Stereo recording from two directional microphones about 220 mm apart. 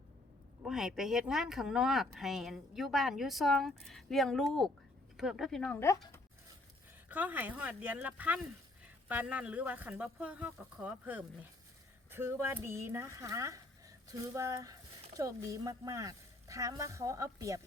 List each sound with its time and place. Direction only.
0.6 s speech: centre (ahead or behind)
7.1 s speech: 10° right (ahead or behind)